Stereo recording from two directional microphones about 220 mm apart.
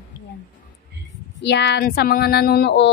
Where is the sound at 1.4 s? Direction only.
50° left (ahead or behind).